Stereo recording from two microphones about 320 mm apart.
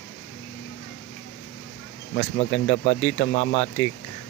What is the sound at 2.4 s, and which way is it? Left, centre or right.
Speech, left.